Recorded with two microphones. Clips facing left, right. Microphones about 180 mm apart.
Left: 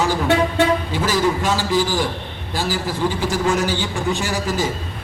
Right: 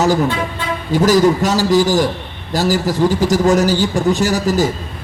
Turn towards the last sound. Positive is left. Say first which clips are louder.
# right 7 dB
turn(degrees=-40)  # may be behind; listen again after turning